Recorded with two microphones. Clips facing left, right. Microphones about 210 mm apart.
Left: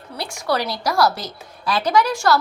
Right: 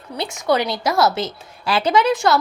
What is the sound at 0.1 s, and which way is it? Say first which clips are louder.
A woman's voice: right 4 dB; 20° right (ahead or behind).